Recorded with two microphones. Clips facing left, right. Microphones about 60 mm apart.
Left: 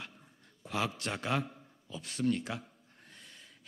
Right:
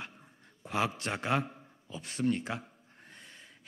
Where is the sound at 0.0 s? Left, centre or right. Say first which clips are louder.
Right 3 dB; right.